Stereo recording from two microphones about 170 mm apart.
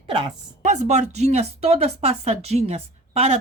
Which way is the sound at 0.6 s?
45° right (ahead or behind).